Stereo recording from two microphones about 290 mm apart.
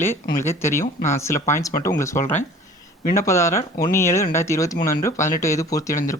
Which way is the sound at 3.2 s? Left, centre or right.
Centre.